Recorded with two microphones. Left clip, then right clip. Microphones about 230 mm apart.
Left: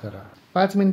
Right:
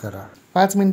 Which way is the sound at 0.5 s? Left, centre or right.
Centre.